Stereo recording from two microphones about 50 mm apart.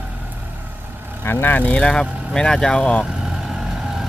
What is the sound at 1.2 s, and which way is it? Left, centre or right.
Speech, left.